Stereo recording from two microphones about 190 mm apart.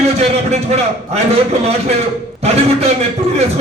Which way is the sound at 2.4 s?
35° right (ahead or behind).